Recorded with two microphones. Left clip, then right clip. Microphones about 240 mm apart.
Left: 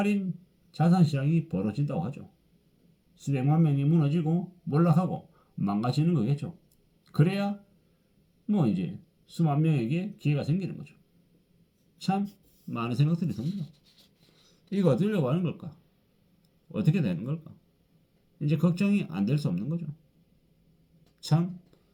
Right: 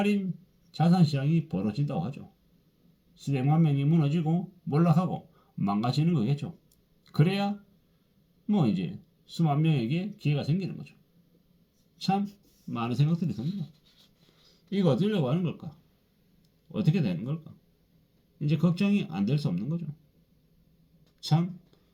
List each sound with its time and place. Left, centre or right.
0.0 s speech: centre
11.9 s speech: centre
13.3 s speech: left
14.5 s speech: centre
16.7 s speech: centre
21.2 s speech: centre